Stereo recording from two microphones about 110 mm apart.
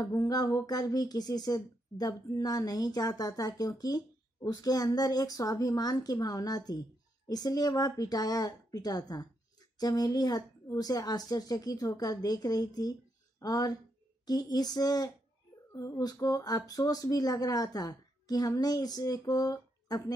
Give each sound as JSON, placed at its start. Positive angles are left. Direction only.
{"t": 0.0, "sound": "a woman's voice", "side_deg": 35}